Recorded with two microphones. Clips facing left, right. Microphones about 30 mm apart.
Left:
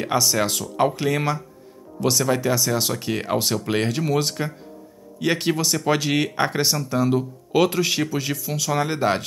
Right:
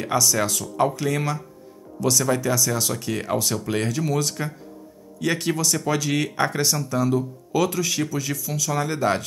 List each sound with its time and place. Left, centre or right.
0.0 s speech: left
7.2 s speech: left